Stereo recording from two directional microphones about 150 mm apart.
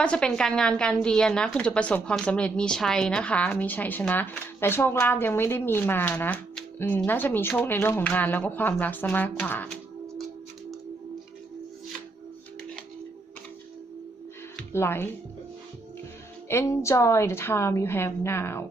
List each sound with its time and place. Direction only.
0.0 s a woman's voice: 5° left (ahead or behind)
14.7 s speech: 15° left (ahead or behind)
16.5 s a woman's voice: 20° left (ahead or behind)